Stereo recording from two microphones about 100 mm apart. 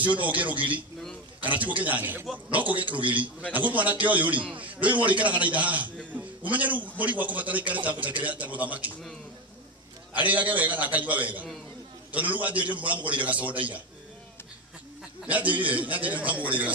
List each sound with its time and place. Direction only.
0.3 s a man's voice: 15° right (ahead or behind)
2.8 s a man's voice: 55° right (ahead or behind)
3.5 s a man's voice: 15° right (ahead or behind)
10.1 s a man's voice: 15° right (ahead or behind)
15.2 s a man's voice: 15° right (ahead or behind)